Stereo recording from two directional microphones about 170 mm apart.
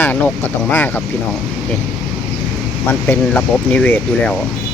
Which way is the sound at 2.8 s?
10° left (ahead or behind).